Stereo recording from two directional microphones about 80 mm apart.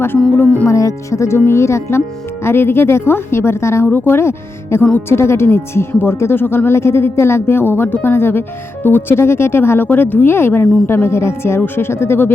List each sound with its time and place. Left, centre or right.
0.3 s speech: left
0.7 s speech: left
3.8 s speech: left